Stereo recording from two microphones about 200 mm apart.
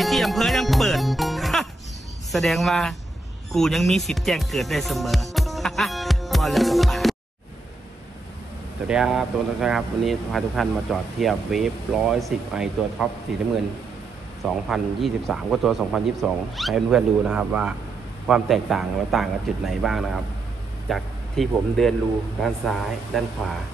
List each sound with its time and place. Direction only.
0.0 s music: centre (ahead or behind)
2.3 s speech: centre (ahead or behind)
8.8 s speech: 5° right (ahead or behind)
14.4 s speech: centre (ahead or behind)